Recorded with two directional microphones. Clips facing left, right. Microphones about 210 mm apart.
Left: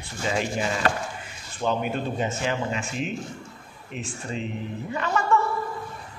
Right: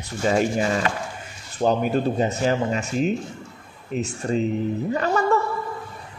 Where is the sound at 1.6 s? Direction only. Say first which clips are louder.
Right 6 dB; 40° right (ahead or behind).